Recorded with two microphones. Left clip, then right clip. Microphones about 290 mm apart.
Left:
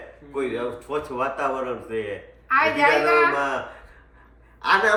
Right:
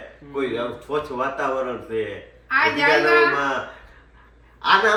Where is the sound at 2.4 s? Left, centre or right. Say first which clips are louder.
Even; centre.